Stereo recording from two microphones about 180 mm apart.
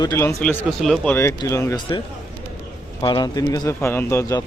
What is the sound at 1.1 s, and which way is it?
A man's voice, 15° left (ahead or behind).